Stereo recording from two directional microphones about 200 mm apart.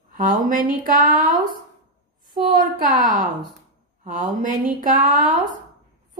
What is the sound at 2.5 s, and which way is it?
Speech, 45° right (ahead or behind).